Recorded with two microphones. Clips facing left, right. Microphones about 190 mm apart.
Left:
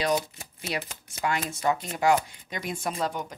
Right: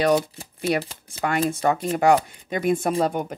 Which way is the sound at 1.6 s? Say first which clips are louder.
Right 2 dB; 55° right (ahead or behind).